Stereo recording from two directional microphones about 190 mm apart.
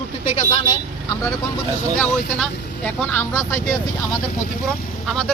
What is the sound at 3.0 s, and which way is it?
Speech, 10° left (ahead or behind).